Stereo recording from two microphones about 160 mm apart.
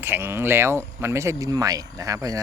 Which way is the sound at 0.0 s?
15° right (ahead or behind).